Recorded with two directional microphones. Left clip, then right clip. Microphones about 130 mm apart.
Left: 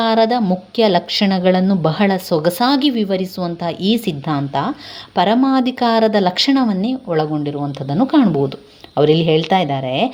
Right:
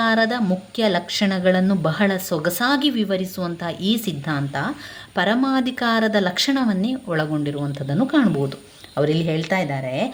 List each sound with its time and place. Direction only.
0.0 s a woman's voice: 25° left (ahead or behind)
8.0 s a woman's voice: 30° left (ahead or behind)